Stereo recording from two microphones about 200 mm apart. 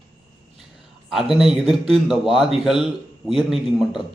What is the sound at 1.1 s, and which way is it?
A man's voice, centre (ahead or behind).